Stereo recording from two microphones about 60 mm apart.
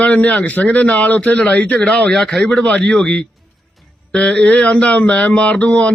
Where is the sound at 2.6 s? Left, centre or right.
Centre.